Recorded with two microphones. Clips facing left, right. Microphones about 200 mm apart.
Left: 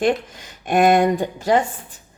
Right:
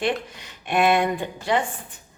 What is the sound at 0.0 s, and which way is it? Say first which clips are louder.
Speech: left 6 dB; 45° left (ahead or behind).